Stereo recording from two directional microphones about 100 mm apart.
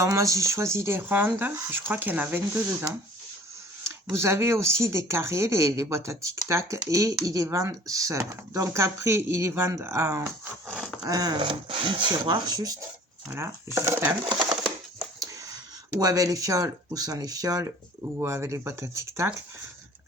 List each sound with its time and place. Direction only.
0.0 s speech: 30° right (ahead or behind)
3.8 s speech: 25° right (ahead or behind)
11.0 s speech: 40° right (ahead or behind)
13.2 s speech: 25° right (ahead or behind)
15.2 s speech: 35° right (ahead or behind)